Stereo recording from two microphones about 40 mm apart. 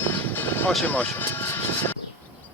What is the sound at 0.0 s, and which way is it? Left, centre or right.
Vehicle, left.